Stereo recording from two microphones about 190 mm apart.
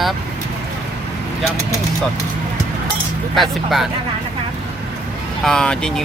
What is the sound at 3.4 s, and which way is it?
Speech, centre (ahead or behind).